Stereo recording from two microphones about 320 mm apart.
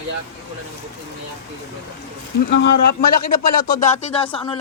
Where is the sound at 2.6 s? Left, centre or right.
Left.